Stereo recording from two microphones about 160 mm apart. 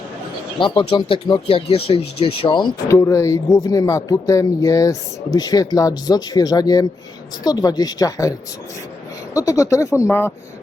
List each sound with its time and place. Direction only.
0.6 s speech: 30° left (ahead or behind)
2.8 s speech: 20° left (ahead or behind)